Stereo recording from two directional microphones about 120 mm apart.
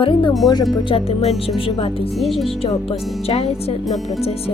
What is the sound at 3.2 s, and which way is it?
Speech, 60° left (ahead or behind).